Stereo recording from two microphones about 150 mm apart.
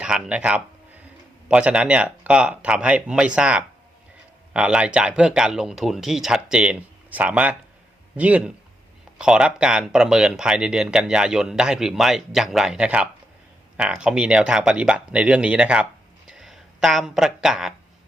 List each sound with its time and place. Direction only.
0.0 s speech: 5° right (ahead or behind)